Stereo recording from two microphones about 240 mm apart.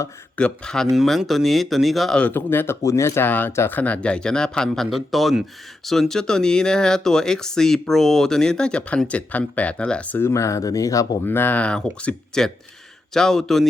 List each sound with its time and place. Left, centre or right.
0.0 s speech: centre